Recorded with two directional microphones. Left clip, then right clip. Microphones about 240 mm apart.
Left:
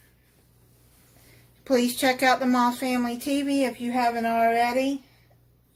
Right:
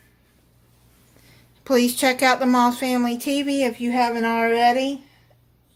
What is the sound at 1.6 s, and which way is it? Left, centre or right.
A woman's voice, right.